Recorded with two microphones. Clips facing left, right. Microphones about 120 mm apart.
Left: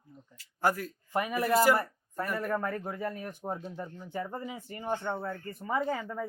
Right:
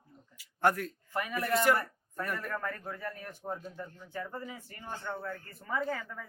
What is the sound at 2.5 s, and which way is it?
Speech, 20° left (ahead or behind).